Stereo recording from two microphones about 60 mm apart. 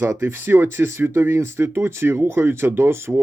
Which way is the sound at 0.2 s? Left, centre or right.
Right.